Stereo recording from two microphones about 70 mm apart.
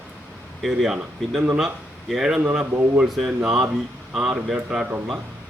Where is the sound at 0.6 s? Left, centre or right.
Centre.